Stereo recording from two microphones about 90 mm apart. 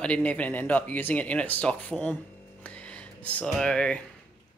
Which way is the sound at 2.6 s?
15° left (ahead or behind).